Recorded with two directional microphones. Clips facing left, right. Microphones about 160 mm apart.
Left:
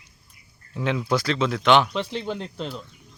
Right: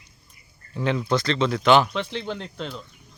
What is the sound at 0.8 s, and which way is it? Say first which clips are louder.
Speech: right 1 dB; centre (ahead or behind).